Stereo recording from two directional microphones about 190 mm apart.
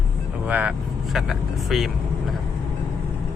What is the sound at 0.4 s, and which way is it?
Speech, 5° right (ahead or behind).